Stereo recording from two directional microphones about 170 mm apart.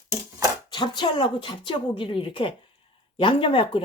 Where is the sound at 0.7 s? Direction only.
25° left (ahead or behind).